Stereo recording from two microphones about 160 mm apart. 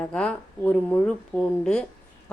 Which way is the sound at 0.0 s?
5° left (ahead or behind).